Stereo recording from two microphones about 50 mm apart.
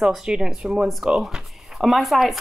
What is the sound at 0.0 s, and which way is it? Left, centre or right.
A woman's voice, centre.